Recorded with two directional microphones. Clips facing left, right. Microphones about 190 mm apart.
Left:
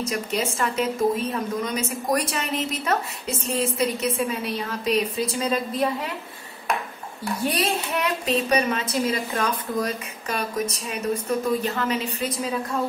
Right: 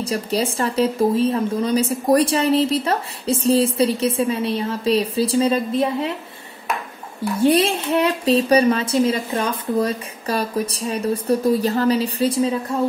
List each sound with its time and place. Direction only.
0.0 s speech: 35° right (ahead or behind)
7.4 s speech: 30° right (ahead or behind)